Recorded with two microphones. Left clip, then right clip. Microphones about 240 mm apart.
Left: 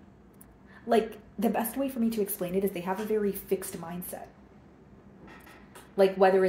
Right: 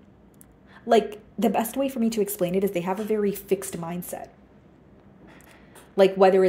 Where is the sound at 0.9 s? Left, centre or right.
Right.